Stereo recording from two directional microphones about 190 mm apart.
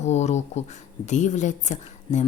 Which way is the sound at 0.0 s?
35° left (ahead or behind).